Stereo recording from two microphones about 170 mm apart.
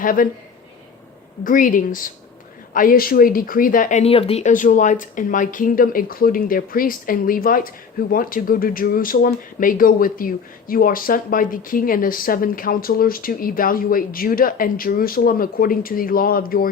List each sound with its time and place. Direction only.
0.0 s speech: 55° left (ahead or behind)
1.5 s speech: 50° left (ahead or behind)